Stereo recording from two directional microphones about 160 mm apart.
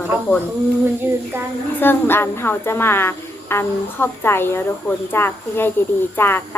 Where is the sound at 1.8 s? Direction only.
15° left (ahead or behind).